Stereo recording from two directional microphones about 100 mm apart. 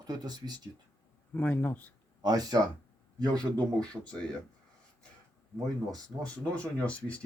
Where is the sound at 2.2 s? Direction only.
40° right (ahead or behind).